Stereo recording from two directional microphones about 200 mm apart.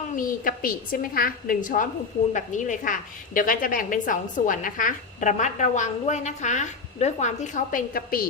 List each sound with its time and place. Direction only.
0.2 s a woman's voice: 45° left (ahead or behind)